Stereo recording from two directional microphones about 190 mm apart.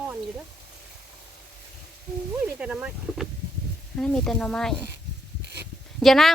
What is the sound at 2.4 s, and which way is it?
Speech, 5° right (ahead or behind).